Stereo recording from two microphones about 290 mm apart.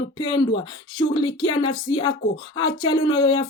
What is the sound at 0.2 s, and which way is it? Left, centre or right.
Speech, centre.